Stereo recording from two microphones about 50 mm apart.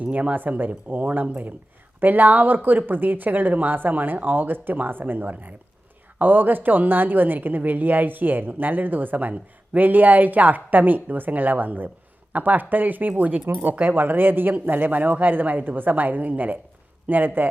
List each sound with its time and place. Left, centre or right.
0.0 s speech: right
13.6 s speech: right